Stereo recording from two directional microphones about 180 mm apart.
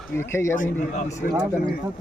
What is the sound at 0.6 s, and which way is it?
Speech, 45° left (ahead or behind).